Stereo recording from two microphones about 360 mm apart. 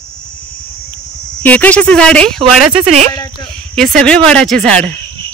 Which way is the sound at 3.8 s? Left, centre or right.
Centre.